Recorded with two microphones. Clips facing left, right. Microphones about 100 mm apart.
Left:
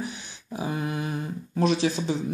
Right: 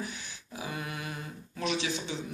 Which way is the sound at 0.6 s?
30° left (ahead or behind).